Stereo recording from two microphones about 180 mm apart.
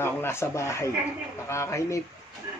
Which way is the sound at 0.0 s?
15° left (ahead or behind).